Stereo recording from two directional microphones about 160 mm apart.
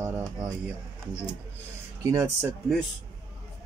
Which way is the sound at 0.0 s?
15° right (ahead or behind).